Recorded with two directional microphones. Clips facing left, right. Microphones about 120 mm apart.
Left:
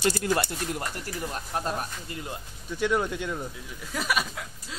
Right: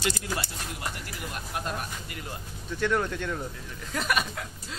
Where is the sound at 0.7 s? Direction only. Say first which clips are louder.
Left 4 dB; 40° left (ahead or behind); by 2.4 s 25° left (ahead or behind).